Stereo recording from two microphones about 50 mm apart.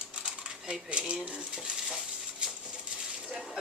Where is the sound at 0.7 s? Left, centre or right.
Centre.